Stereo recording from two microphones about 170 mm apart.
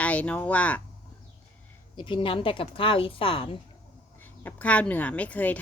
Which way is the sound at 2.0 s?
30° left (ahead or behind).